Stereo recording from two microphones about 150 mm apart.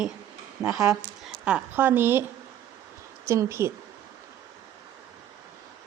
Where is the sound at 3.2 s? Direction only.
20° right (ahead or behind).